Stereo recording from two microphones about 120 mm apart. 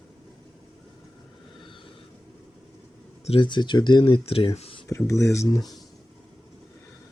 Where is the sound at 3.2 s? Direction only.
45° left (ahead or behind).